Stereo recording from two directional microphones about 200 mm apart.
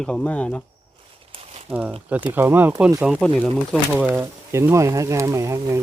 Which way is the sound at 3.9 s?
10° right (ahead or behind).